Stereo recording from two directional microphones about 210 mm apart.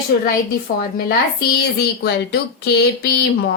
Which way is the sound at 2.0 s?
55° left (ahead or behind).